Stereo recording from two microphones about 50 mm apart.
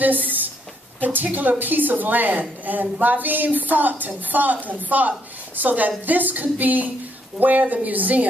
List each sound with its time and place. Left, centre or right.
1.0 s a woman's voice: right